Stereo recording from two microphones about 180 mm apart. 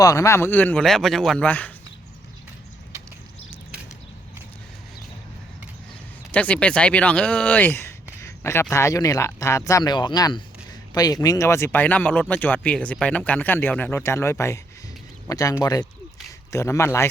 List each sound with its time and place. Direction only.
0.0 s speech: 20° left (ahead or behind)
6.3 s speech: 5° left (ahead or behind)
8.2 s a sound: 15° left (ahead or behind)
8.7 s speech: 15° left (ahead or behind)